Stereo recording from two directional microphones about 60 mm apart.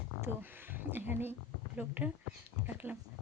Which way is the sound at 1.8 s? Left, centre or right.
Right.